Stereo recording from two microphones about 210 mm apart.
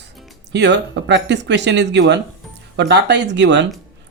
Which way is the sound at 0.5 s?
55° right (ahead or behind).